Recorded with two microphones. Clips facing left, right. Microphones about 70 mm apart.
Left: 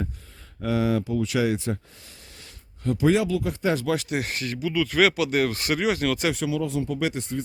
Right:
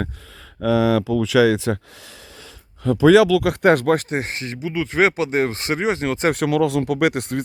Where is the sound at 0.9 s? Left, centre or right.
Right.